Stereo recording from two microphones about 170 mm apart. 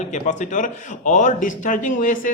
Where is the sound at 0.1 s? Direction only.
45° left (ahead or behind).